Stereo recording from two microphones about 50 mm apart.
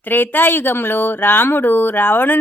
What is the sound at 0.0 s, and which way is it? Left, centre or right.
A woman's voice, left.